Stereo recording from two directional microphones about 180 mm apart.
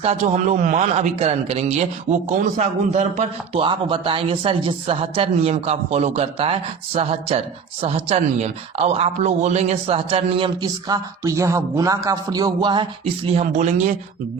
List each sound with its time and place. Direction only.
0.0 s a man's voice: 35° right (ahead or behind)